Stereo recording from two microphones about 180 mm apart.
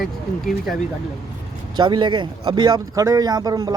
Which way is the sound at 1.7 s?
25° right (ahead or behind).